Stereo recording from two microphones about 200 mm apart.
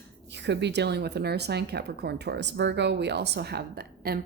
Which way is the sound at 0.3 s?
60° right (ahead or behind).